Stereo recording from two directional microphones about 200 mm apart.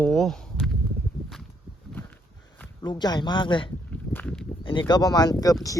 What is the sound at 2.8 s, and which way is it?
Speech, 20° left (ahead or behind).